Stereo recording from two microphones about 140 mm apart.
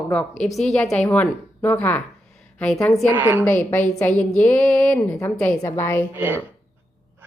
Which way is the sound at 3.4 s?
15° left (ahead or behind).